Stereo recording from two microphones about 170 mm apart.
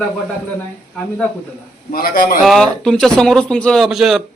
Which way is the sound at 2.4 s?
Centre (ahead or behind).